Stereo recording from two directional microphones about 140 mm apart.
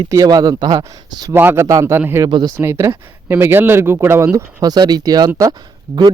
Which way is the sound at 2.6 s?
20° right (ahead or behind).